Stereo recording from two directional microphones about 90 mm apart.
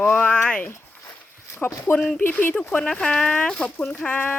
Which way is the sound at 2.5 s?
10° left (ahead or behind).